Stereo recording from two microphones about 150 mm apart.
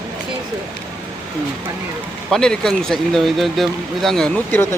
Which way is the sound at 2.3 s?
5° left (ahead or behind).